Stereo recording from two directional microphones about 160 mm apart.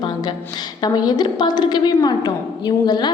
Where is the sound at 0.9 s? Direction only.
25° left (ahead or behind).